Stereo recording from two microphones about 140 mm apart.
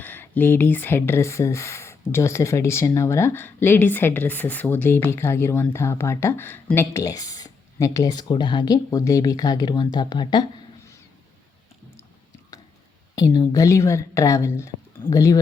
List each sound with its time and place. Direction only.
0.0 s speech: 15° left (ahead or behind); by 10.4 s 30° left (ahead or behind)
13.1 s speech: 25° left (ahead or behind)